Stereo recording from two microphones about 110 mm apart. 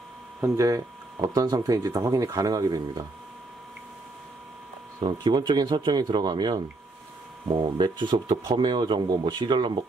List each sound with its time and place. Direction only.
0.4 s speech: 30° right (ahead or behind)
5.0 s speech: 45° right (ahead or behind)
7.8 s speech: 45° right (ahead or behind)